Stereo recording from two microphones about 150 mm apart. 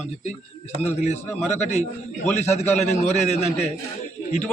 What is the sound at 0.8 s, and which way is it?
A man's voice, 45° left (ahead or behind).